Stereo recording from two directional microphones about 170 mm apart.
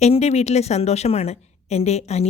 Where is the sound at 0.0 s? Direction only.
40° left (ahead or behind).